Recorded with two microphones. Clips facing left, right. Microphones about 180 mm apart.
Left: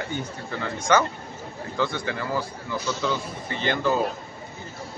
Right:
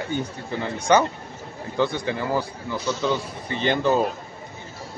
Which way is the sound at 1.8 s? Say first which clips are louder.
Right 4 dB; 20° right (ahead or behind).